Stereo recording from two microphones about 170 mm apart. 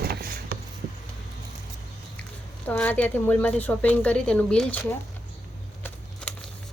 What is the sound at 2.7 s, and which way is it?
A woman's voice, 10° left (ahead or behind).